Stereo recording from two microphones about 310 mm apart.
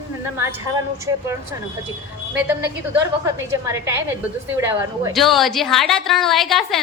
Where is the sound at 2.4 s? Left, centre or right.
Centre.